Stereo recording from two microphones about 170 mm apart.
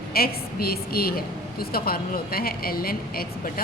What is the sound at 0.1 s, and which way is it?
Speech, 65° left (ahead or behind).